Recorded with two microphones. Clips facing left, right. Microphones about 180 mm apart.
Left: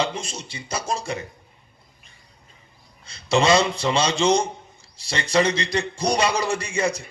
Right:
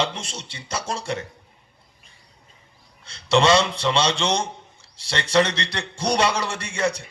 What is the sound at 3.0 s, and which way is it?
A man's voice, 80° right.